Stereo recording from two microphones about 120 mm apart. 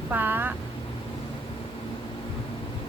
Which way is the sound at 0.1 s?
15° right (ahead or behind).